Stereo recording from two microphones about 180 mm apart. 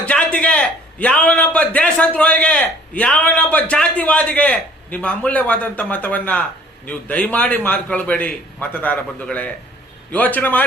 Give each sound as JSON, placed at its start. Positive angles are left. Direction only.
{"t": 0.0, "sound": "a man's voice", "side_deg": 5}